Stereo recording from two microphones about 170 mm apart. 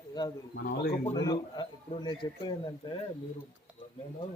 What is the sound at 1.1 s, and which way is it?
Speech, 25° left (ahead or behind).